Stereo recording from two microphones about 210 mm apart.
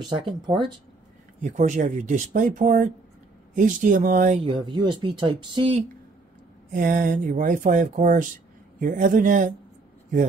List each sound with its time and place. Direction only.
0.0 s speech: 20° right (ahead or behind)
1.4 s speech: 35° right (ahead or behind)
4.5 s speech: 20° right (ahead or behind)
6.7 s speech: 40° right (ahead or behind)